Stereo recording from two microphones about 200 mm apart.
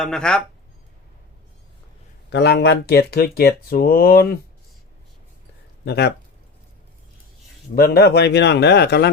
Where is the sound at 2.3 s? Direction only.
55° left (ahead or behind).